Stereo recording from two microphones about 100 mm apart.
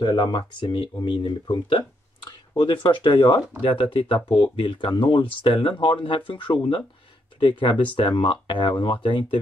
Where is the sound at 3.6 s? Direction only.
60° left (ahead or behind).